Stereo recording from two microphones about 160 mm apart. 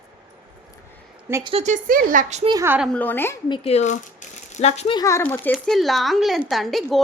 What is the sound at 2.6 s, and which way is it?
Speech, 10° right (ahead or behind).